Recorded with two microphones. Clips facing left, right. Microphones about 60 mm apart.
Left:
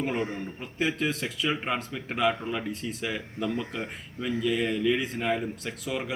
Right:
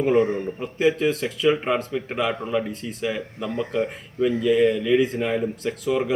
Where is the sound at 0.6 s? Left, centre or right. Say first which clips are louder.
Right 8 dB; centre.